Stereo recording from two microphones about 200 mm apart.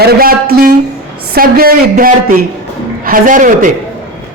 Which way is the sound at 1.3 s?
50° right (ahead or behind).